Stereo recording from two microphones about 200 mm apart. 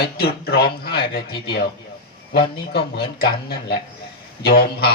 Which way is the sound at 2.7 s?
55° left (ahead or behind).